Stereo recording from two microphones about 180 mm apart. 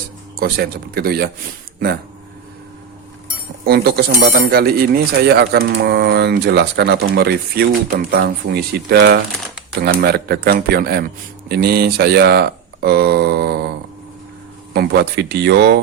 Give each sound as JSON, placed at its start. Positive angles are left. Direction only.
{"t": 0.3, "sound": "speech", "side_deg": -60}
{"t": 3.7, "sound": "speech", "side_deg": -65}
{"t": 14.7, "sound": "speech", "side_deg": -65}